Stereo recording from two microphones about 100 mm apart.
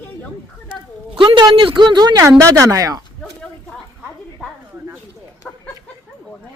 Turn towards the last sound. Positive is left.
turn(degrees=5)  # may be behind; listen again after turning